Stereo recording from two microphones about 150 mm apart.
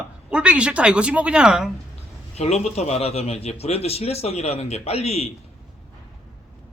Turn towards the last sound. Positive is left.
turn(degrees=45)  # may be behind; listen again after turning